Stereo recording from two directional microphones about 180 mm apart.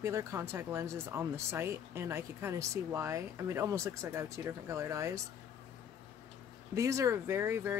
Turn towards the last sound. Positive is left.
turn(degrees=-15)  # may be behind; listen again after turning